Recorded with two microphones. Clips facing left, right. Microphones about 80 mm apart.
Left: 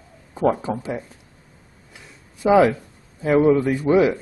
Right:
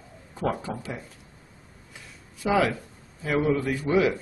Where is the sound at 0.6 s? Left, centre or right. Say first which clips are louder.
Left 8 dB; left.